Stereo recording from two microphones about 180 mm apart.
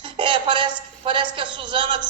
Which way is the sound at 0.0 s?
25° right (ahead or behind).